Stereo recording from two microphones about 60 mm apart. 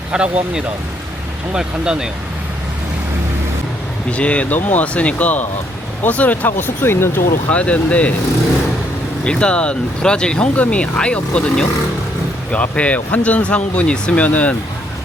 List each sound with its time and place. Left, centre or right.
0.1 s speech: centre
4.1 s speech: left
6.8 s speech: left
7.5 s speech: left
9.2 s speech: centre